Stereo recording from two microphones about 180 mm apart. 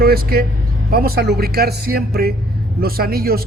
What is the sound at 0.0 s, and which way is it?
A man's voice, 60° right (ahead or behind).